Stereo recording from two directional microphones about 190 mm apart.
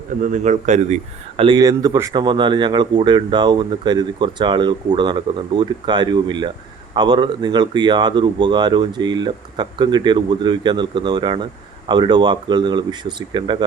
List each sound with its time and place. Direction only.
0.2 s speech: 40° right (ahead or behind)
1.4 s speech: 25° right (ahead or behind)